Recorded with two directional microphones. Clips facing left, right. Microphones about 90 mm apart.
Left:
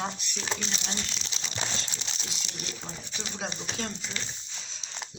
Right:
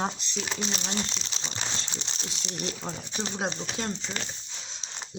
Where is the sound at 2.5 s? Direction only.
40° right (ahead or behind).